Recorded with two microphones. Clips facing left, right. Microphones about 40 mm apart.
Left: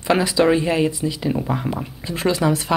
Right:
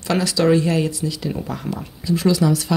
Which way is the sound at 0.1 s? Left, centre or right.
Left.